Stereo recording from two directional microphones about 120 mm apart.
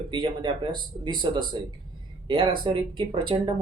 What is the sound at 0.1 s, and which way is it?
Speech, 45° right (ahead or behind).